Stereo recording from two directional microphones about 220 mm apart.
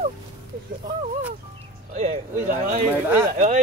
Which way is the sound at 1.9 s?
30° right (ahead or behind).